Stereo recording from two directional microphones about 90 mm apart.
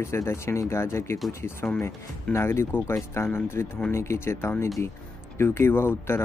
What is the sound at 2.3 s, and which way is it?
Speech, 30° left (ahead or behind).